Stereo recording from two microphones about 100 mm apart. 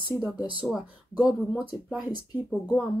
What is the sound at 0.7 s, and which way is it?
Speech, 5° right (ahead or behind).